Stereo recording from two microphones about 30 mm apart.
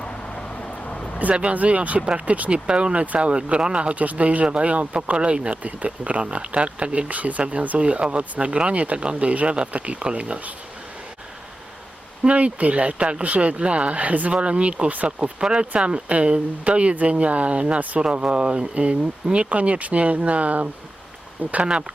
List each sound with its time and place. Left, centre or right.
0.9 s a sound: left
1.5 s speech: right
2.6 s speech: right
3.9 s speech: right
4.4 s speech: right
5.6 s speech: right
7.1 s speech: right
8.8 s speech: right
12.3 s speech: right
13.2 s speech: right
14.3 s speech: right
21.6 s speech: right